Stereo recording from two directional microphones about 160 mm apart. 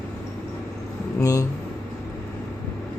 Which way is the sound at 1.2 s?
20° left (ahead or behind).